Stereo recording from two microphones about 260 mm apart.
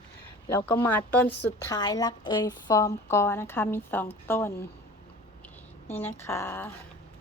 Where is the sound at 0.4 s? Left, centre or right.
Centre.